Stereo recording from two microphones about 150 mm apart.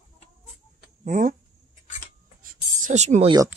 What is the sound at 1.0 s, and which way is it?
Speech, 60° right (ahead or behind).